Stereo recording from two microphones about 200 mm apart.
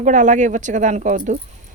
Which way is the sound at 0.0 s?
40° right (ahead or behind).